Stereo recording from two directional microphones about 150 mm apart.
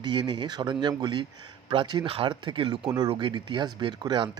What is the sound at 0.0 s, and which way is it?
Speech, 30° right (ahead or behind).